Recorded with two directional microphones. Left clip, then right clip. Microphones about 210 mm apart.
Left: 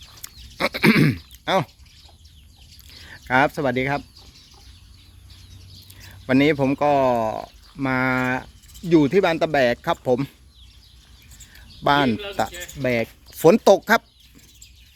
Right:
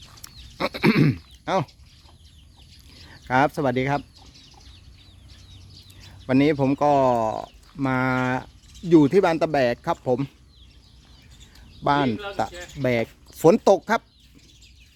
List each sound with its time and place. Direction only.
0.0 s goat: 5° right (ahead or behind)
3.0 s speech: 5° right (ahead or behind)
6.0 s speech: 5° right (ahead or behind)
11.8 s speech: 5° right (ahead or behind)
12.5 s speech: 20° right (ahead or behind)